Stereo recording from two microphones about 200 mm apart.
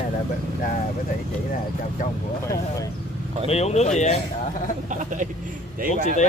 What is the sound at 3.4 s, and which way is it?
Speech, 30° left (ahead or behind).